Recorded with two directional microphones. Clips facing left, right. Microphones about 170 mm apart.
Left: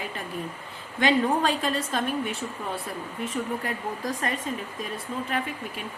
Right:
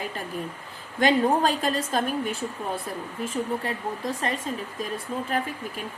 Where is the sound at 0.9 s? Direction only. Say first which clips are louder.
Right 2 dB; 40° right (ahead or behind).